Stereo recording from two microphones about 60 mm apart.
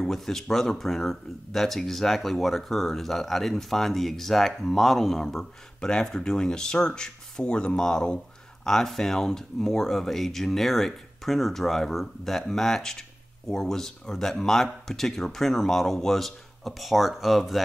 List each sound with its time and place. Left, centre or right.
0.0 s speech: centre